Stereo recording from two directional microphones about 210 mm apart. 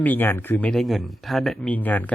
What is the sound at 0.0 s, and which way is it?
Speech, 10° left (ahead or behind).